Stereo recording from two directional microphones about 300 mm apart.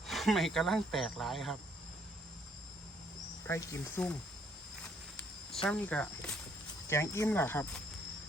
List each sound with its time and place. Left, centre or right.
0.1 s speech: centre
3.4 s speech: centre
5.6 s speech: centre